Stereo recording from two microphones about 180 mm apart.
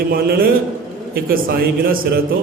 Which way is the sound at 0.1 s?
55° right (ahead or behind).